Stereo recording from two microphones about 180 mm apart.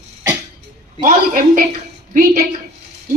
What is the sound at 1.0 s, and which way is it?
Speech, 45° right (ahead or behind).